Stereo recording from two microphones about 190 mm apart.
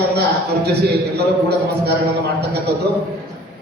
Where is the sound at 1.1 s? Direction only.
60° right (ahead or behind).